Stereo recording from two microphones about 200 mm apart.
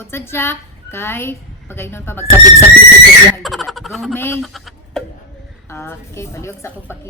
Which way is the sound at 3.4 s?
Centre (ahead or behind).